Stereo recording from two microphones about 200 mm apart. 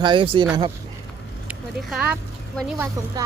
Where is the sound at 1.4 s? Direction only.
5° right (ahead or behind).